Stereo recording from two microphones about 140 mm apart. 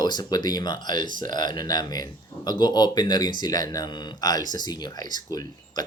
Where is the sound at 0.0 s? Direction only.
30° left (ahead or behind).